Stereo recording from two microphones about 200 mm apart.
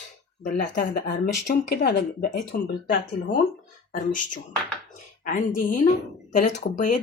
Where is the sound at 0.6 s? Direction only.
40° left (ahead or behind).